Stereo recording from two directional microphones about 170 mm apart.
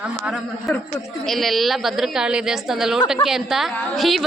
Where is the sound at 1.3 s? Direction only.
Centre (ahead or behind).